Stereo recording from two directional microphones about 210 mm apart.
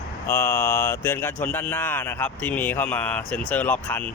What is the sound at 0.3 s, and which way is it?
Speech, 10° left (ahead or behind).